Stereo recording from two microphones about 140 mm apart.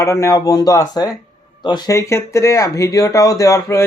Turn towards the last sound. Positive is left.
turn(degrees=20)  # may be behind; listen again after turning